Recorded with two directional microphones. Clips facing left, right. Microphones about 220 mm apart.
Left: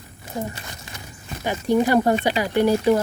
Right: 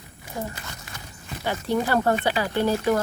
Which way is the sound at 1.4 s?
15° left (ahead or behind).